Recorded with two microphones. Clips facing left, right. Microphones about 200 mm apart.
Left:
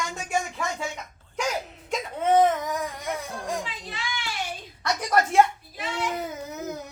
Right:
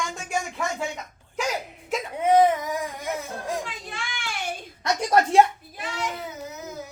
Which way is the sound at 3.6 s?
50° right (ahead or behind).